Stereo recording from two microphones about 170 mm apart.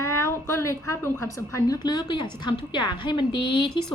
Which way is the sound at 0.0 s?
15° left (ahead or behind).